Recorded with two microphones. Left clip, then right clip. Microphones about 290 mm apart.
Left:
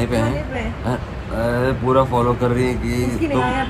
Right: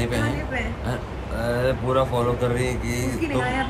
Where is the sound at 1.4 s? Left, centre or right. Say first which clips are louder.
Left 4 dB; centre.